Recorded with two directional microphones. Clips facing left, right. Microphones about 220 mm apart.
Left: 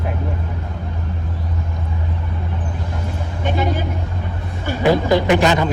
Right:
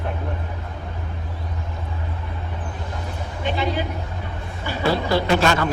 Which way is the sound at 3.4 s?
45° left (ahead or behind).